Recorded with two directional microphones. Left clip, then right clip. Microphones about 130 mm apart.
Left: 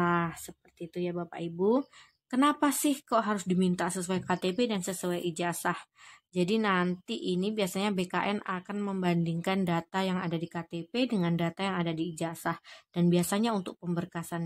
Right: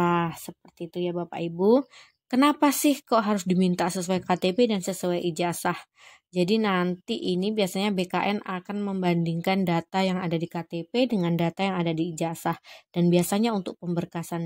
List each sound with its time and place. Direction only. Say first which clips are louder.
0.0 s a sound: right 4 dB; 40° right (ahead or behind)
1.0 s a woman's voice: right 5 dB; 30° right (ahead or behind)
1.3 s a woman's voice: right 7 dB; 40° right (ahead or behind)